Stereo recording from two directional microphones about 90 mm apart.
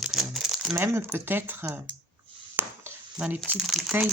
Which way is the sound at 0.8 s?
25° right (ahead or behind).